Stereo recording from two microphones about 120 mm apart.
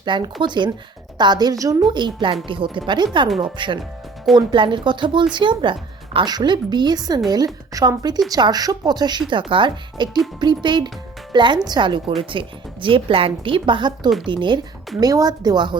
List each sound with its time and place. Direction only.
0.0 s a woman's voice: 40° right (ahead or behind)